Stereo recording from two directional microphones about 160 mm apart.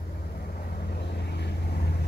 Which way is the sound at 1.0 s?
90° left.